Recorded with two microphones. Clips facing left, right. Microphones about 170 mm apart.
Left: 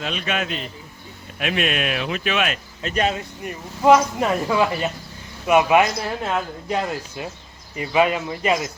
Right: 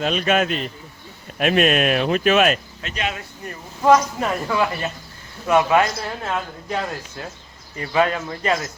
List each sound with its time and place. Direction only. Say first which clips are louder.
0.0 s speech: right 6 dB; 45° right (ahead or behind)
2.8 s speech: left 7 dB; 40° left (ahead or behind)
3.2 s speech: left 3 dB; 15° left (ahead or behind)